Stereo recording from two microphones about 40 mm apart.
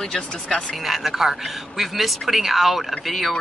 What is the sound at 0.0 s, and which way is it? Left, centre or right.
Speech, centre.